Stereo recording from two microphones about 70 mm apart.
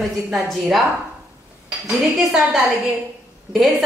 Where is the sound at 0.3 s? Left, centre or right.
Centre.